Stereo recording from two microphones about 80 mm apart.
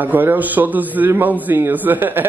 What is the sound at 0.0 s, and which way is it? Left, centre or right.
A man's voice, right.